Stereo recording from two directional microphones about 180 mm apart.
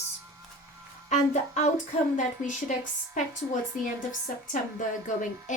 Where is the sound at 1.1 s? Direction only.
40° left (ahead or behind).